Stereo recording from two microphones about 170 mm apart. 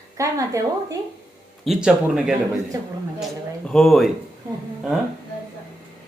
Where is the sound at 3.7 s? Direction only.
Centre (ahead or behind).